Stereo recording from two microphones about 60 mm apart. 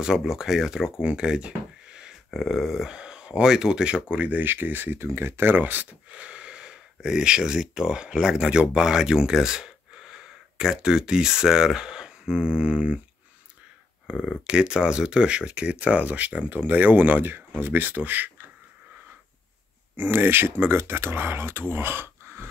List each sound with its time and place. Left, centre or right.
0.0 s speech: centre
1.0 s a sound: centre
2.3 s speech: centre; by 4.5 s right
4.5 s speech: right
4.9 s speech: right; by 13.0 s centre
14.1 s speech: centre
20.0 s speech: right